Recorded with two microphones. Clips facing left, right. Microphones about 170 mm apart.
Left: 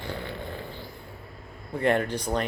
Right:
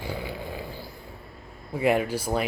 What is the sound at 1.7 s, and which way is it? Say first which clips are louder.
Speech: right 1 dB; 5° right (ahead or behind).